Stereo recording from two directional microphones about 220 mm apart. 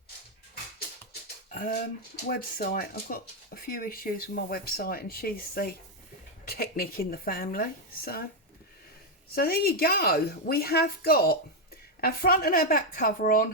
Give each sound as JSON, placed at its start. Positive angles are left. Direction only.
{"t": 1.5, "sound": "dog", "side_deg": 40}
{"t": 2.2, "sound": "speech", "side_deg": 40}
{"t": 9.3, "sound": "a woman's voice", "side_deg": 45}